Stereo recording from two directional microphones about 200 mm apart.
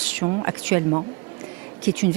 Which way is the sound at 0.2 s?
15° right (ahead or behind).